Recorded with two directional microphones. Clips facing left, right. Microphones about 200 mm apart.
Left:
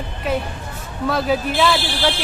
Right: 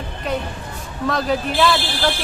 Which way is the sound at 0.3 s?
5° left (ahead or behind).